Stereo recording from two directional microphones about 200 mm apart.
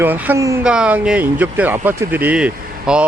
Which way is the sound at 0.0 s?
10° right (ahead or behind).